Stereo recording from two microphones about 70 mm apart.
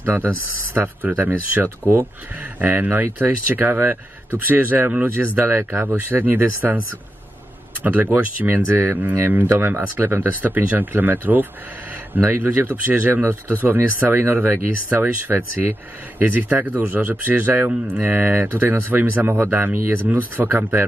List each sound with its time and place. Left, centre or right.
0.0 s speech: right
7.8 s speech: right